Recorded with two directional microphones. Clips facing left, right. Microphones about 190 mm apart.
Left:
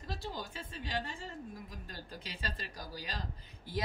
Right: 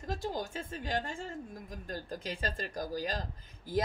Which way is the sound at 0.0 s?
45° right (ahead or behind).